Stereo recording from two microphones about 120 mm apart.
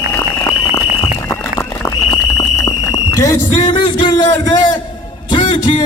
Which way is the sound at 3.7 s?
40° left (ahead or behind).